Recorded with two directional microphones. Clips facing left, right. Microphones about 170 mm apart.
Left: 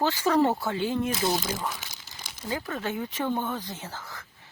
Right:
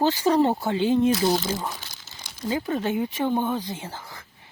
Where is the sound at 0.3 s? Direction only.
20° right (ahead or behind).